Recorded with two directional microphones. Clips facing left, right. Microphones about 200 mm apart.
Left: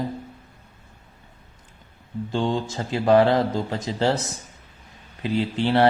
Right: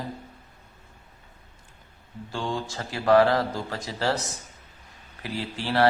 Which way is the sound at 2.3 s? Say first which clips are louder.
Left 6 dB; 20° left (ahead or behind).